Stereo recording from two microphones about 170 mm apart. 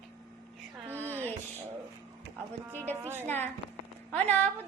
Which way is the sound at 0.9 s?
15° right (ahead or behind).